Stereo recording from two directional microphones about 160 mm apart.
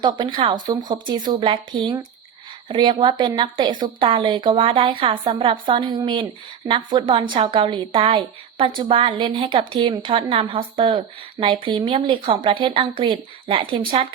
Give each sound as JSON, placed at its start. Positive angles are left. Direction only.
{"t": 0.0, "sound": "a woman's voice", "side_deg": -30}